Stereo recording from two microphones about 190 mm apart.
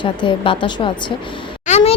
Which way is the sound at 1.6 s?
35° left (ahead or behind).